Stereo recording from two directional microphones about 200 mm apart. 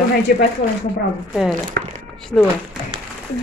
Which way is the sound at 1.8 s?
50° right (ahead or behind).